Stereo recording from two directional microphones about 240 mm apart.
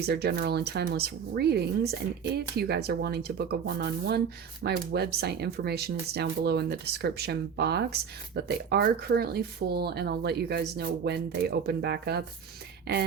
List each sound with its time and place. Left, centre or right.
0.0 s speech: right